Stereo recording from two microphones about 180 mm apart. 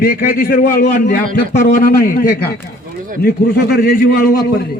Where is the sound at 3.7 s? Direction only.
55° left (ahead or behind).